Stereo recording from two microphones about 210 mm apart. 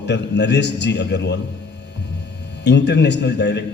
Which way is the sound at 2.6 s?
55° left (ahead or behind).